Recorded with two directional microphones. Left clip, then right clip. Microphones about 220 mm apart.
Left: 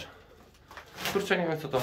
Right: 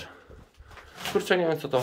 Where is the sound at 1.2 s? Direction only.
25° right (ahead or behind).